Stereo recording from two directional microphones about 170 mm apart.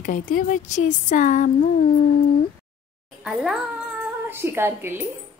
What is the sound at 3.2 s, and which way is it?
A woman's voice, 5° right (ahead or behind).